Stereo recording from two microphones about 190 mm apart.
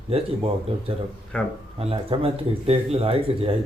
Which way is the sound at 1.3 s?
5° left (ahead or behind).